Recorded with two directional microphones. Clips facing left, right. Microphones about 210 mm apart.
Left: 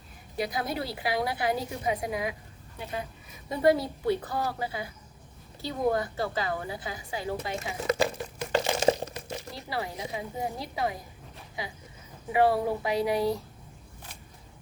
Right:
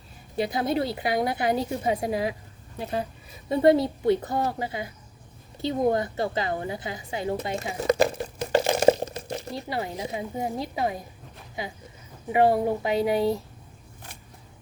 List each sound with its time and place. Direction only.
0.3 s a woman's voice: 25° right (ahead or behind)
12.3 s a woman's voice: 25° right (ahead or behind)